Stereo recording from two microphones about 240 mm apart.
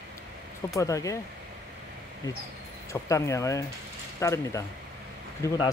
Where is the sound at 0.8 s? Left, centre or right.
Centre.